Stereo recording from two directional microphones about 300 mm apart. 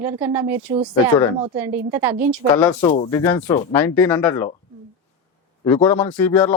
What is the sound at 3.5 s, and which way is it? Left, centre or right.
Speech, centre.